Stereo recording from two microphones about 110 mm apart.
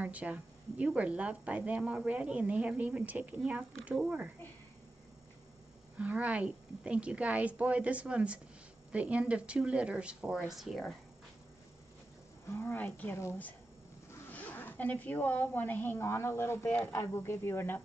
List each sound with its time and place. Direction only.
0.0 s a woman's voice: 15° right (ahead or behind)
5.9 s a woman's voice: 15° right (ahead or behind)
12.4 s speech: 20° left (ahead or behind)